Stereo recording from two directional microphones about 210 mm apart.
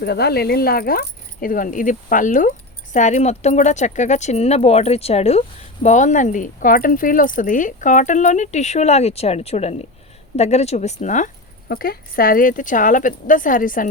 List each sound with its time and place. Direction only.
0.0 s speech: 50° left (ahead or behind)